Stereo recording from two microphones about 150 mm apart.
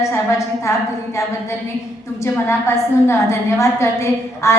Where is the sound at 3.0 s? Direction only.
20° left (ahead or behind).